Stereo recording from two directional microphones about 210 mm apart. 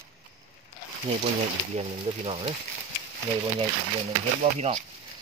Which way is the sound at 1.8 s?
25° right (ahead or behind).